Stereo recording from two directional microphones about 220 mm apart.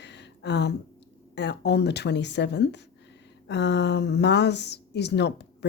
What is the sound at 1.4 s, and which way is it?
Speech, 50° left (ahead or behind).